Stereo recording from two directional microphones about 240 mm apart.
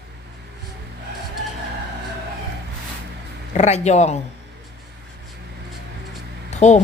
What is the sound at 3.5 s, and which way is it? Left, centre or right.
Speech, left.